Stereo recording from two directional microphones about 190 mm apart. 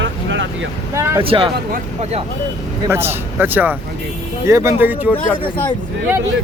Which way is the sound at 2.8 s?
10° right (ahead or behind).